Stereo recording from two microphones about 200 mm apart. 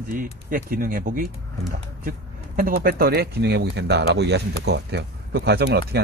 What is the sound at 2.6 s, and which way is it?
Speech, 50° right (ahead or behind).